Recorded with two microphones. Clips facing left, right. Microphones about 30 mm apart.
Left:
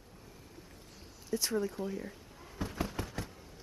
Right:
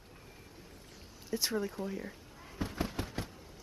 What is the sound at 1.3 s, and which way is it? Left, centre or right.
Speech, centre.